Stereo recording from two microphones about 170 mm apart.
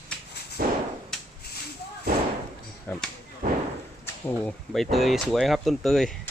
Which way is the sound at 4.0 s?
15° left (ahead or behind).